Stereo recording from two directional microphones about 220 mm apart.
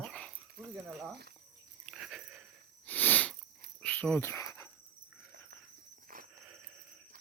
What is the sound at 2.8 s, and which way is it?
Sniff, 5° left (ahead or behind).